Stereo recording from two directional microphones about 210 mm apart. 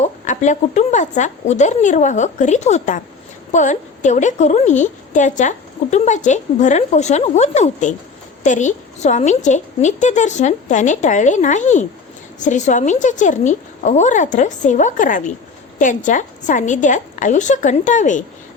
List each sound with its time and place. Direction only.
0.0 s a woman's voice: 35° left (ahead or behind)